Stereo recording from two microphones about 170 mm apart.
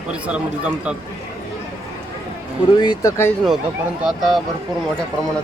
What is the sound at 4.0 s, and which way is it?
Speech, centre (ahead or behind).